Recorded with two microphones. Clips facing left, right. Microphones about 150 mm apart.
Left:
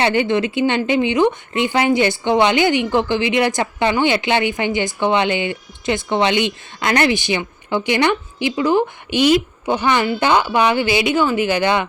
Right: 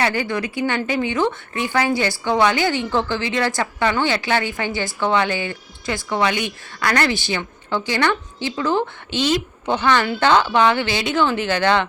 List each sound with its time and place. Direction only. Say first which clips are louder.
0.0 s speech: left 5 dB; 20° left (ahead or behind)